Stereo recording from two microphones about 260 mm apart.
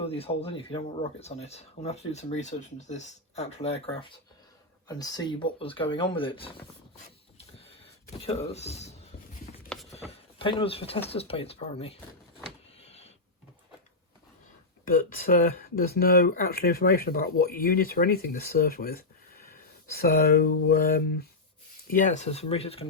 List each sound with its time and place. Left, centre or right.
0.0 s speech: left
8.2 s speech: left
9.9 s a sound: left
11.1 s speech: left
12.8 s a sound: left
14.8 s speech: left